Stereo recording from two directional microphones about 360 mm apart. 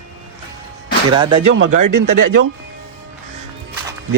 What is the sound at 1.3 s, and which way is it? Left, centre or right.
Speech, right.